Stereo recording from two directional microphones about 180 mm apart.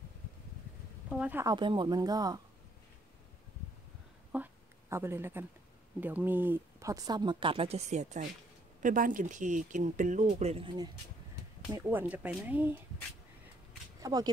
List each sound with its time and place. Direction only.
1.1 s speech: 5° right (ahead or behind)
1.4 s speech: 25° right (ahead or behind)
4.3 s a sound: 10° right (ahead or behind)
5.9 s speech: 10° right (ahead or behind); by 10.9 s 25° right (ahead or behind)
11.7 s speech: 10° right (ahead or behind)
14.0 s speech: 20° right (ahead or behind)